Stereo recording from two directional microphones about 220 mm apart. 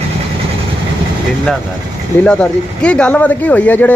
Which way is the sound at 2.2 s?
5° left (ahead or behind).